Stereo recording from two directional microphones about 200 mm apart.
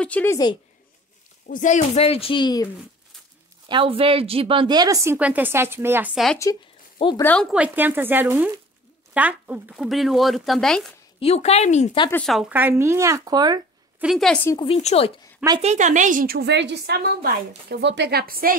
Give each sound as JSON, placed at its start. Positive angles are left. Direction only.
{"t": 0.0, "sound": "a woman's voice", "side_deg": 10}
{"t": 1.5, "sound": "speech", "side_deg": 40}
{"t": 3.6, "sound": "a woman's voice", "side_deg": -25}
{"t": 7.0, "sound": "a woman's voice", "side_deg": 25}
{"t": 7.5, "sound": "a woman's voice", "side_deg": -10}
{"t": 11.1, "sound": "speech", "side_deg": 30}
{"t": 12.1, "sound": "a woman's voice", "side_deg": 5}
{"t": 13.9, "sound": "speech", "side_deg": 0}
{"t": 14.6, "sound": "speech", "side_deg": 30}
{"t": 15.6, "sound": "a woman's voice", "side_deg": -35}